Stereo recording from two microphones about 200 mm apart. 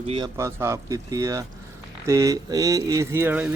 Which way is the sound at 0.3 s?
15° right (ahead or behind).